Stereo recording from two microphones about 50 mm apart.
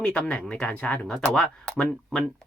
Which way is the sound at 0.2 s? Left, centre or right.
Left.